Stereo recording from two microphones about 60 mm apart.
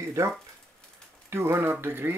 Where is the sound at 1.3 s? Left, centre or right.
Right.